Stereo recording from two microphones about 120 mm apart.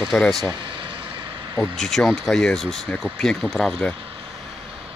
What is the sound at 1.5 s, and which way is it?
Speech, centre (ahead or behind).